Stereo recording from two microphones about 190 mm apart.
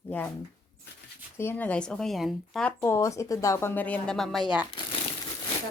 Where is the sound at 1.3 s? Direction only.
10° left (ahead or behind).